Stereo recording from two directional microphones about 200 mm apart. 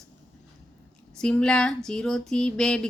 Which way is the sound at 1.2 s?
5° left (ahead or behind).